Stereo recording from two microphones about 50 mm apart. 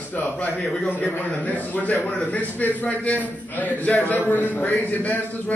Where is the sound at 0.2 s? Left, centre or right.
Left.